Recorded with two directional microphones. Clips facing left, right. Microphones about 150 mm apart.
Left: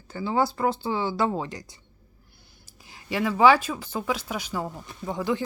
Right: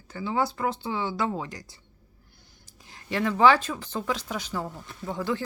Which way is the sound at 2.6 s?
10° left (ahead or behind).